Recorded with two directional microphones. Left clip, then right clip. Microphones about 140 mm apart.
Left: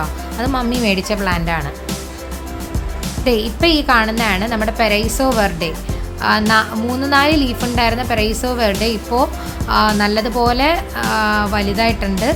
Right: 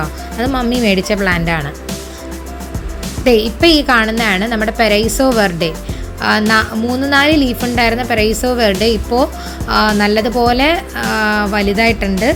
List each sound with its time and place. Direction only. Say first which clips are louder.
0.3 s a woman's voice: right 3 dB; 20° right (ahead or behind)
3.2 s a woman's voice: right 5 dB; 25° right (ahead or behind)